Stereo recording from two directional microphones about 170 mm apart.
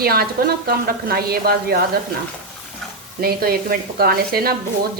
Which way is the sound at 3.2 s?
60° right (ahead or behind).